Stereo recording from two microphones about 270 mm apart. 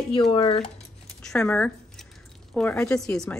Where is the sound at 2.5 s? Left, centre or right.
Centre.